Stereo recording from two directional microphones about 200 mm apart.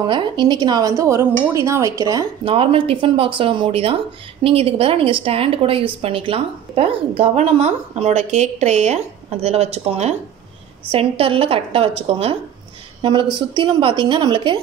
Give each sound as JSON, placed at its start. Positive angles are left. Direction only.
{"t": 0.0, "sound": "a woman's voice", "side_deg": -25}